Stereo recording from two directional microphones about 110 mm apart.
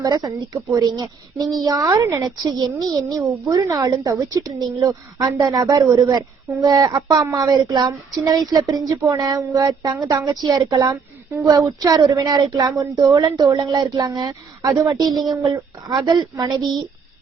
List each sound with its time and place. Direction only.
0.0 s a woman's voice: 35° right (ahead or behind)
15.4 s speech: 30° right (ahead or behind)
15.9 s a woman's voice: 40° right (ahead or behind)